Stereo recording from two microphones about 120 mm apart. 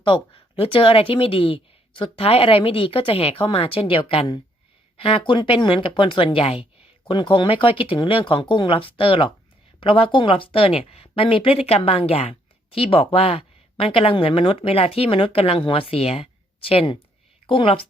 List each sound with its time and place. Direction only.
0.0 s speech: 45° left (ahead or behind)